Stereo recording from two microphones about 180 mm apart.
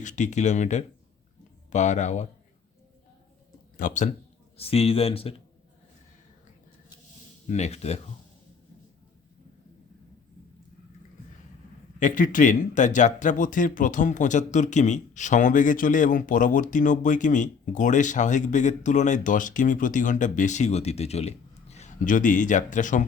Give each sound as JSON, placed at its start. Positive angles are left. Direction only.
{"t": 0.0, "sound": "speech", "side_deg": 40}
{"t": 3.8, "sound": "speech", "side_deg": 45}
{"t": 4.5, "sound": "speech", "side_deg": 35}
{"t": 7.4, "sound": "speech", "side_deg": 40}
{"t": 11.9, "sound": "speech", "side_deg": 45}